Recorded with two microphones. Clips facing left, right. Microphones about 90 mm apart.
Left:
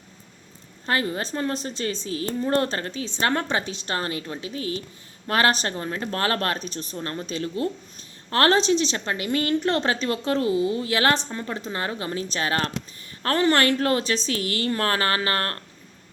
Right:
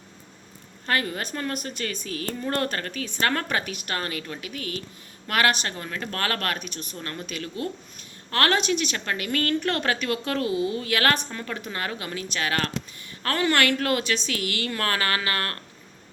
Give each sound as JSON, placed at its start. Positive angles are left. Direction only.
{"t": 0.9, "sound": "a woman's voice", "side_deg": 25}